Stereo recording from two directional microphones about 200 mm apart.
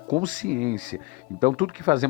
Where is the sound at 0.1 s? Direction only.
40° right (ahead or behind).